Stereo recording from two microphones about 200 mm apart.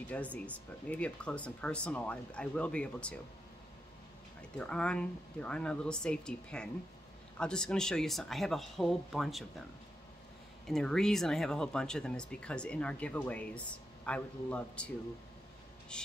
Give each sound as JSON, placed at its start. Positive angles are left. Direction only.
{"t": 0.1, "sound": "speech", "side_deg": 5}
{"t": 4.4, "sound": "speech", "side_deg": 5}
{"t": 10.7, "sound": "speech", "side_deg": 5}
{"t": 15.9, "sound": "speech", "side_deg": 5}